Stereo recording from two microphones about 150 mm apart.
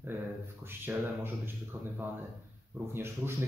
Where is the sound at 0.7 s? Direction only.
15° right (ahead or behind).